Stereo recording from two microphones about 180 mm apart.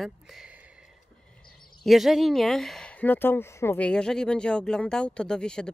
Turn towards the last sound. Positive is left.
turn(degrees=5)  # may be behind; listen again after turning